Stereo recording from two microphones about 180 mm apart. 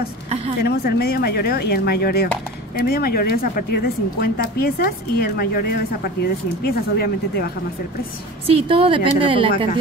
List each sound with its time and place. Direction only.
0.7 s speech: 60° left (ahead or behind)
8.5 s a woman's voice: 30° right (ahead or behind)